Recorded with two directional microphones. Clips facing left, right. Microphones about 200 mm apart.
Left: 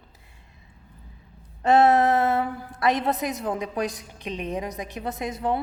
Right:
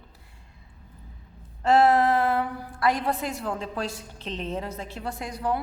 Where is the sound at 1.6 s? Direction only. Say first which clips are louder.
Left 2 dB; 20° left (ahead or behind).